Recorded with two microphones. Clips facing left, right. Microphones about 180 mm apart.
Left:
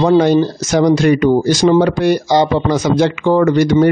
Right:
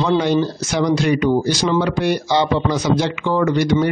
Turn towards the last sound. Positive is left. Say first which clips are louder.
# left 5 dB
turn(degrees=45)  # may be behind; listen again after turning